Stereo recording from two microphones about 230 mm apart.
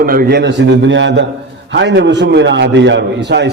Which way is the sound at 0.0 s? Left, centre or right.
Right.